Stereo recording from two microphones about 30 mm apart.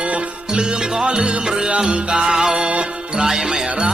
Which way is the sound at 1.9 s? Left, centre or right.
Right.